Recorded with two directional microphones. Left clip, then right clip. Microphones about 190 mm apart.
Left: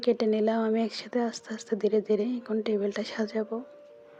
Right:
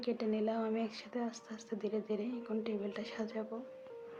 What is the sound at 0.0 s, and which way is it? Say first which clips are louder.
A woman's voice: left 11 dB; 40° left (ahead or behind).